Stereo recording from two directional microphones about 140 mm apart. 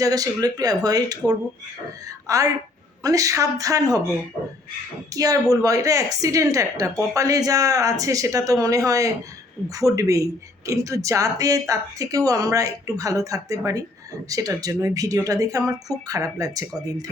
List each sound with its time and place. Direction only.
0.0 s a woman's voice: 25° right (ahead or behind)
5.1 s speech: 25° right (ahead or behind)